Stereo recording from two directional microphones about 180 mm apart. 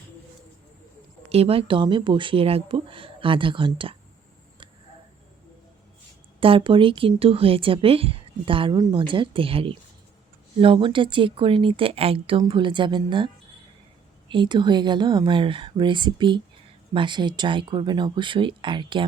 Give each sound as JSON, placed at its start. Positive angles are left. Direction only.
{"t": 1.3, "sound": "a woman's voice", "side_deg": -35}
{"t": 6.4, "sound": "a woman's voice", "side_deg": -30}